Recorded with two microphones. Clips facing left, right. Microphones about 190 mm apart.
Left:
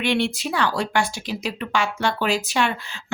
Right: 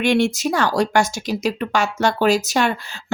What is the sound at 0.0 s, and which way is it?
Speech, 45° right (ahead or behind).